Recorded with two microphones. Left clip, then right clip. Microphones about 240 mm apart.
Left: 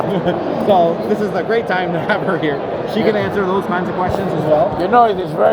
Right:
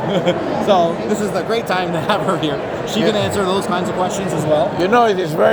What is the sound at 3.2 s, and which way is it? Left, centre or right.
Speech, centre.